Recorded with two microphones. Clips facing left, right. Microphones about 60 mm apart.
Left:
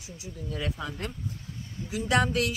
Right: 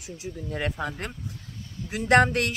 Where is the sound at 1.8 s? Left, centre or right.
Right.